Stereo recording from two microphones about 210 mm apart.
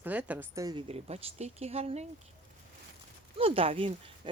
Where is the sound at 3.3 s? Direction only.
25° right (ahead or behind).